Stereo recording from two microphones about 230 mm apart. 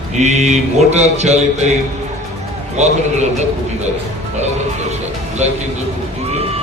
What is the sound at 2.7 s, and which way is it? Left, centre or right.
Speech, right.